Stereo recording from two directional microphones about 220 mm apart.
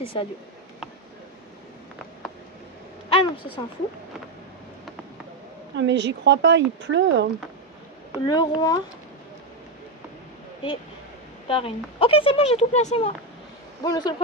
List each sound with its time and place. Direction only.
0.0 s speech: 25° left (ahead or behind)
3.1 s speech: 25° left (ahead or behind)
5.8 s speech: 55° right (ahead or behind)
8.3 s speech: 20° left (ahead or behind)
11.4 s speech: 25° left (ahead or behind)
13.8 s speech: 20° left (ahead or behind)